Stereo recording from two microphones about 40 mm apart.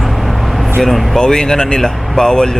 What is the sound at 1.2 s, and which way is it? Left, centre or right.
Speech, centre.